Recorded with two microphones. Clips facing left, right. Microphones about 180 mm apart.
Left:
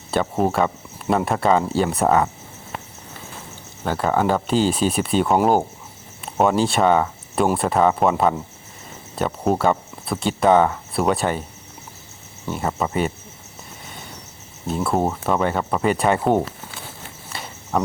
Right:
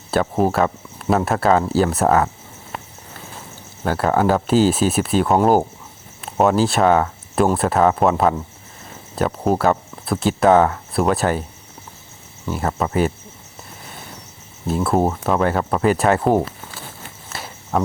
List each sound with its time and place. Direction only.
0.1 s speech: centre (ahead or behind)
3.8 s speech: 5° right (ahead or behind)
12.5 s speech: centre (ahead or behind)
14.7 s speech: centre (ahead or behind)
17.3 s cricket: centre (ahead or behind)